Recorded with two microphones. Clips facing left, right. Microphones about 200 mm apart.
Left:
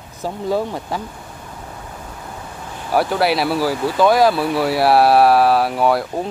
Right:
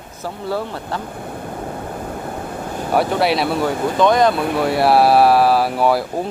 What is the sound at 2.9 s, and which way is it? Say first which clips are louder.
Speech: even; centre (ahead or behind).